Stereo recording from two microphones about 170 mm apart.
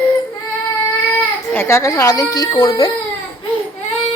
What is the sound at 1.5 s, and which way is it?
A woman's voice, 15° left (ahead or behind).